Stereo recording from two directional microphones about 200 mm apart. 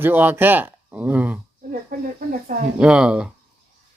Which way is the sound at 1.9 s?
45° right (ahead or behind).